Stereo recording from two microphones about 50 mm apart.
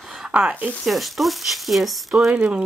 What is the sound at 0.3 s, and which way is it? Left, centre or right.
Speech, right.